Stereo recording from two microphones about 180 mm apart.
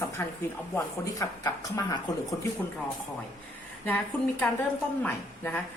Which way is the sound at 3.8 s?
10° left (ahead or behind).